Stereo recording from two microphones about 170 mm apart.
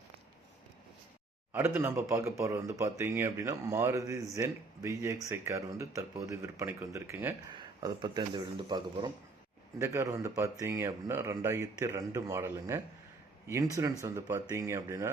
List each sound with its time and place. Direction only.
1.5 s speech: 15° right (ahead or behind)
7.5 s a man's voice: 25° right (ahead or behind)
9.7 s a man's voice: 15° right (ahead or behind)